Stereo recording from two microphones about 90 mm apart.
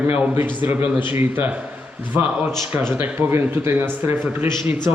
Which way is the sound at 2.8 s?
25° right (ahead or behind).